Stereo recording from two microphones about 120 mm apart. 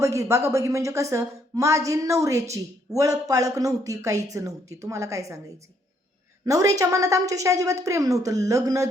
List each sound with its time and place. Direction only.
0.0 s a woman's voice: 25° right (ahead or behind)
6.4 s a woman's voice: 25° right (ahead or behind)